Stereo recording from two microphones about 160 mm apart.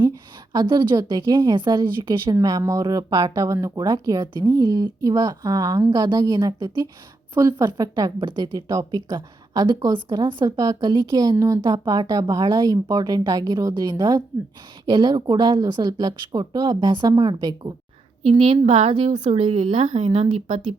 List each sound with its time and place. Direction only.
0.5 s a woman's voice: 30° right (ahead or behind)
18.2 s a woman's voice: 40° right (ahead or behind)
20.1 s speech: 30° right (ahead or behind)